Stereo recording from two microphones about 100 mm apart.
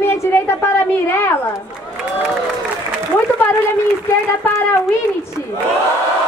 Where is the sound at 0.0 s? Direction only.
20° left (ahead or behind).